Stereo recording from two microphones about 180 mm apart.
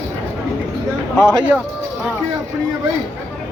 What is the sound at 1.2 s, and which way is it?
Speech, 20° right (ahead or behind).